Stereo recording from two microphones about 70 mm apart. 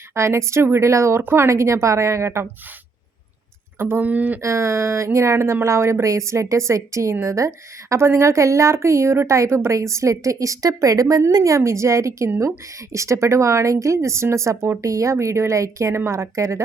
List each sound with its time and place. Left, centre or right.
0.1 s a woman's voice: right
3.8 s speech: right
4.4 s speech: right
11.3 s a woman's voice: right
11.5 s speech: right